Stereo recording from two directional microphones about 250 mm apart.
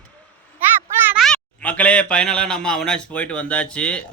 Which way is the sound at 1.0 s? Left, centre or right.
Centre.